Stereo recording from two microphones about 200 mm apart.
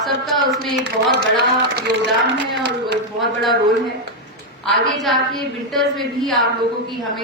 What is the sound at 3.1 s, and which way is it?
Speech, centre (ahead or behind).